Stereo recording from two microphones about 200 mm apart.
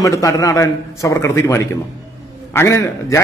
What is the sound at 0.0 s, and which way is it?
A man's voice, 15° left (ahead or behind).